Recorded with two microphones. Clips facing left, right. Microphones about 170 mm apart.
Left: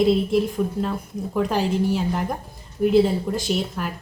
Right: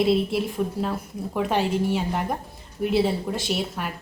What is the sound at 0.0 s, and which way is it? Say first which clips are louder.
A woman's voice: left 3 dB; 5° right (ahead or behind).